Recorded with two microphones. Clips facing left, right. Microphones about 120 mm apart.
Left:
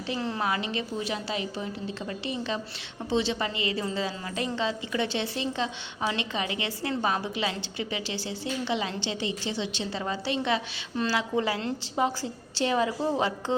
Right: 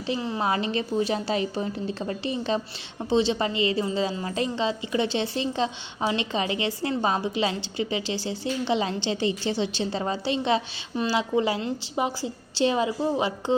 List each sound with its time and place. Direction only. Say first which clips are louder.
0.3 s a woman's voice: right 4 dB; 30° right (ahead or behind)
10.9 s a woman's voice: right 3 dB; 15° right (ahead or behind)
13.0 s a woman's voice: right 2 dB; 10° right (ahead or behind)